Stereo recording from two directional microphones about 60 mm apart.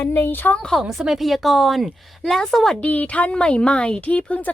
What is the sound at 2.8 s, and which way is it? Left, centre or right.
A woman's voice, left.